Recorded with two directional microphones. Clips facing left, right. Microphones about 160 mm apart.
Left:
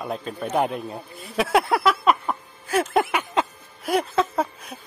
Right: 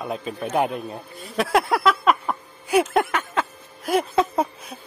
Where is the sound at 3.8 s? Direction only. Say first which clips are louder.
Right 1 dB; centre (ahead or behind).